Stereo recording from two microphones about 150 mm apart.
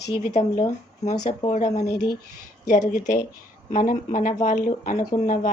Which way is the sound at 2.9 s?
55° left (ahead or behind).